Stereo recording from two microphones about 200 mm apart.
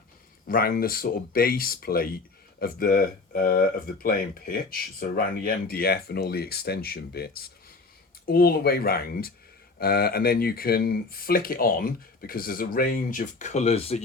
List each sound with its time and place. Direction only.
0.4 s speech: 45° left (ahead or behind); by 14.0 s 30° left (ahead or behind)